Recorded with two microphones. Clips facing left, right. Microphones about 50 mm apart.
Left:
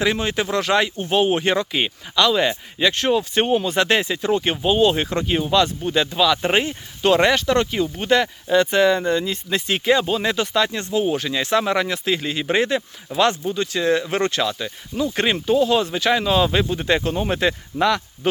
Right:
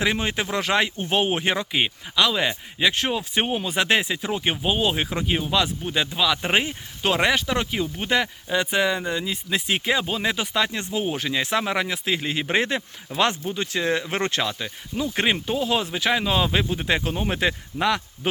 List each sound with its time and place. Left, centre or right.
0.0 s speech: right